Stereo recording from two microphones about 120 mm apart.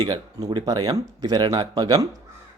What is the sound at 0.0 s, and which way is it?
Speech, 35° right (ahead or behind).